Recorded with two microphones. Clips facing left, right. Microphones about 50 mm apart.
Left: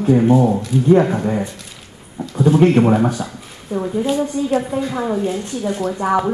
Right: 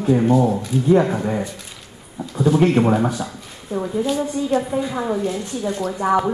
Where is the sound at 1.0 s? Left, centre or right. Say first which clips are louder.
Left 2 dB; centre.